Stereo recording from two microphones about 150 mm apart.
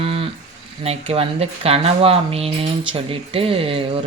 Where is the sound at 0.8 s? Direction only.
40° right (ahead or behind).